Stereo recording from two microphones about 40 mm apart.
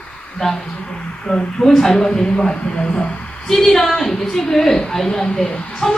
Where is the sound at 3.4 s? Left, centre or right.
Centre.